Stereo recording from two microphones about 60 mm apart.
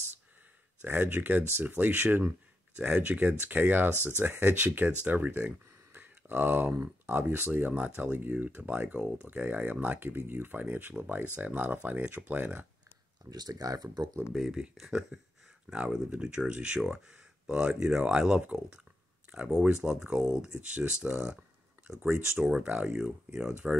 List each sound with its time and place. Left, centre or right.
0.8 s speech: right
5.9 s a sound: right
7.1 s speech: right
13.2 s speech: right
14.3 s speech: centre
15.7 s speech: centre
22.7 s speech: centre